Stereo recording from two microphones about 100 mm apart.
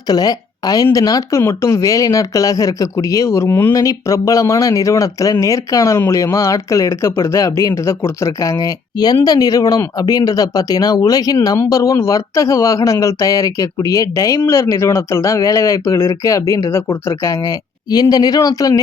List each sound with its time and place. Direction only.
0.1 s a woman's voice: 40° left (ahead or behind)
1.4 s speech: 25° left (ahead or behind)